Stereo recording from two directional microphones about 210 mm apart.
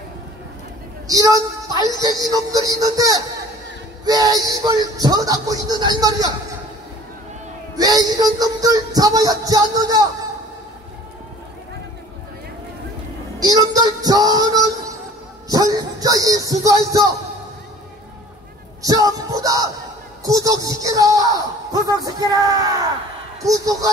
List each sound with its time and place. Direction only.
1.0 s a woman's voice: 15° right (ahead or behind)
7.7 s a woman's voice: 15° right (ahead or behind)
13.4 s child singing: 20° right (ahead or behind)
15.4 s a sound: 20° right (ahead or behind)
18.8 s music: 15° right (ahead or behind)
20.2 s a woman's voice: 15° right (ahead or behind)